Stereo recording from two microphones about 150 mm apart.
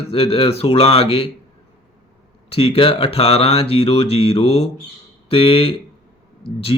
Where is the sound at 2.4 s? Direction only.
40° left (ahead or behind).